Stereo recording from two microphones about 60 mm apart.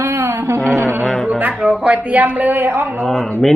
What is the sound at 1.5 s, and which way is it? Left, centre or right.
Speech, centre.